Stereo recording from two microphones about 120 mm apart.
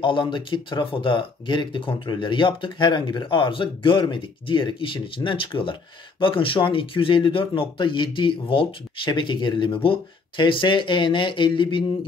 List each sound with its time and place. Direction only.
0.0 s speech: 45° left (ahead or behind)